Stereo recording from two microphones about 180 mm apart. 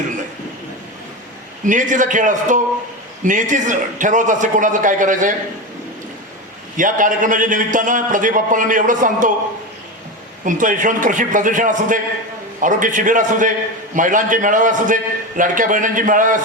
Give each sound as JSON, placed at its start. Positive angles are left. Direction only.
{"t": 1.6, "sound": "a man's voice", "side_deg": -45}
{"t": 6.7, "sound": "a man's voice", "side_deg": -45}
{"t": 10.4, "sound": "a man's voice", "side_deg": -45}